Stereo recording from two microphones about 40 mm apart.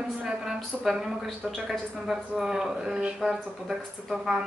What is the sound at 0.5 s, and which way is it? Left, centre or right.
Speech, centre.